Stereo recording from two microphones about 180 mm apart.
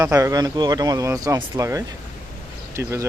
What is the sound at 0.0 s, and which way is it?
Speech, 15° right (ahead or behind).